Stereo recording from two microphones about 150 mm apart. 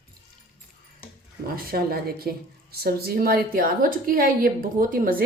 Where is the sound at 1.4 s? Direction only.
80° right.